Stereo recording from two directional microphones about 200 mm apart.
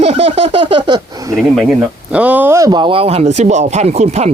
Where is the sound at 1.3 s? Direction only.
Centre (ahead or behind).